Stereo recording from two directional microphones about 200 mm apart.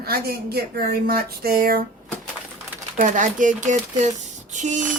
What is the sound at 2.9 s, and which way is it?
Speech, 40° right (ahead or behind).